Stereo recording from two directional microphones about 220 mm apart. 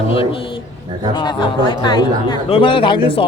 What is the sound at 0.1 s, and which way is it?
Speech, 25° left (ahead or behind).